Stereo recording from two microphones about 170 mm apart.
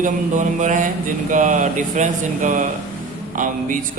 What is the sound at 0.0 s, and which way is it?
A man's voice, 45° right (ahead or behind).